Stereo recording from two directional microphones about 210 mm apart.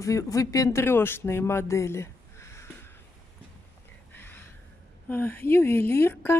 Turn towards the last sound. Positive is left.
turn(degrees=10)  # may be behind; listen again after turning